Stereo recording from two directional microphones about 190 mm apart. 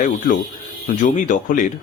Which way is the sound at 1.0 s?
40° left (ahead or behind).